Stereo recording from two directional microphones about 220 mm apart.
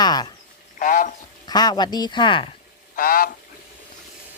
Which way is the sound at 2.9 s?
40° left (ahead or behind).